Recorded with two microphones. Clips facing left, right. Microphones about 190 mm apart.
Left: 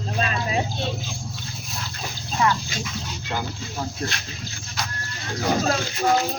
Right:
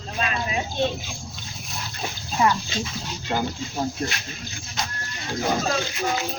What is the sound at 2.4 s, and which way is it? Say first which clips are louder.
Dog: right 1 dB; 25° right (ahead or behind).